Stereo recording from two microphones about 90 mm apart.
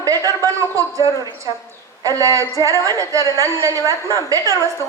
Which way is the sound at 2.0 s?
35° right (ahead or behind).